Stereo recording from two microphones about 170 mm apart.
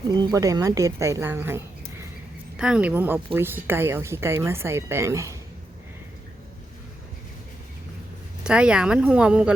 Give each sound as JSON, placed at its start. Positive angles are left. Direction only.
{"t": 0.1, "sound": "a woman's voice", "side_deg": -25}
{"t": 8.4, "sound": "speech", "side_deg": -5}